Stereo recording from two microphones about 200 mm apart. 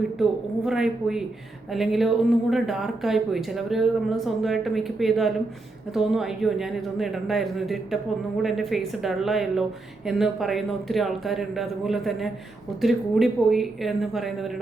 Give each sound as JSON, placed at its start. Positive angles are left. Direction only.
{"t": 0.2, "sound": "speech", "side_deg": 0}